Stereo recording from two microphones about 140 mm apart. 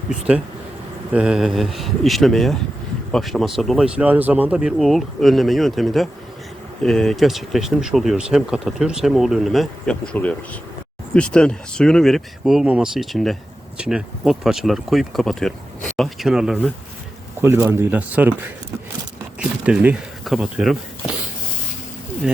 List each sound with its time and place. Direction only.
0.1 s speech: 5° right (ahead or behind)
17.4 s speech: 20° right (ahead or behind); by 20.7 s centre (ahead or behind)